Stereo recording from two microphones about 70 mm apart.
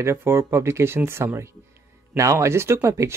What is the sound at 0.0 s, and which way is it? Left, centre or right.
Speech, right.